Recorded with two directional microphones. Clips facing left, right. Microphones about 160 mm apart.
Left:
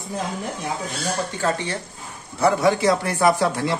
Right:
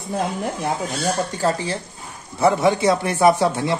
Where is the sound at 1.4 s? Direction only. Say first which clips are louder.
Right 2 dB; 30° right (ahead or behind).